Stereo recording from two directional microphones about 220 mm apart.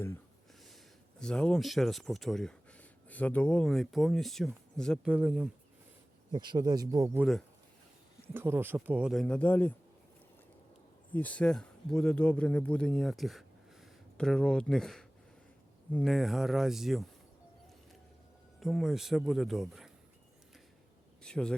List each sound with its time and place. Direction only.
1.2 s speech: 5° left (ahead or behind)
6.3 s speech: 20° right (ahead or behind)
8.3 s speech: 10° right (ahead or behind); by 9.7 s 10° left (ahead or behind)
11.1 s speech: 5° left (ahead or behind)
18.6 s speech: centre (ahead or behind)
21.2 s speech: 5° left (ahead or behind)